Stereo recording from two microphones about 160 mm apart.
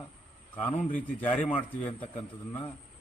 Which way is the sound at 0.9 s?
10° left (ahead or behind).